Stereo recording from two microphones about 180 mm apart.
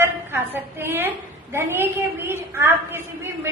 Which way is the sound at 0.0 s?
15° right (ahead or behind).